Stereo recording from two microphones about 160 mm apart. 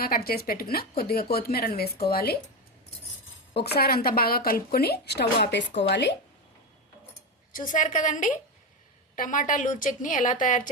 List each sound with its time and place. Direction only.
0.0 s a woman's voice: 70° left (ahead or behind)
3.5 s a woman's voice: 90° left
7.5 s a woman's voice: 55° left (ahead or behind)